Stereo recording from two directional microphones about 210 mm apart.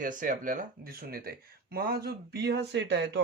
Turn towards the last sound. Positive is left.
turn(degrees=-55)  # may be behind; listen again after turning